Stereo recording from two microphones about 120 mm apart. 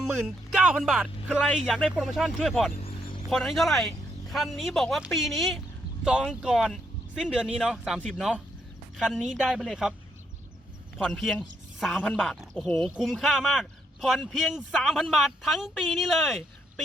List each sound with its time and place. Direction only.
0.0 s a man's voice: 5° right (ahead or behind)
2.8 s a sound: 50° left (ahead or behind)
3.2 s a man's voice: centre (ahead or behind)
10.9 s a man's voice: centre (ahead or behind)
11.9 s speech: 15° left (ahead or behind)
12.2 s a man's voice: centre (ahead or behind)